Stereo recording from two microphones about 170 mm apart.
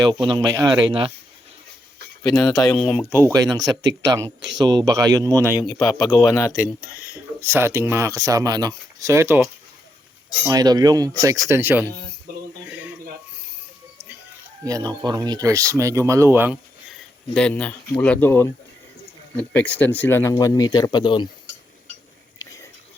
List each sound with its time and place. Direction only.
0.3 s speech: 25° right (ahead or behind)
2.4 s speech: 20° left (ahead or behind)
2.7 s speech: 5° left (ahead or behind)
3.2 s speech: 20° right (ahead or behind)
5.5 s speech: 25° left (ahead or behind)
7.4 s speech: 15° right (ahead or behind)
10.4 s speech: 20° right (ahead or behind)
12.6 s a sound: 10° right (ahead or behind)
14.6 s speech: 20° right (ahead or behind)
16.9 s speech: 5° left (ahead or behind); by 21.2 s 25° left (ahead or behind)